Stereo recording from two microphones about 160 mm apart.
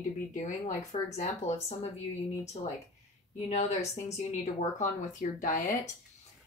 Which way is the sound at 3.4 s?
45° left (ahead or behind).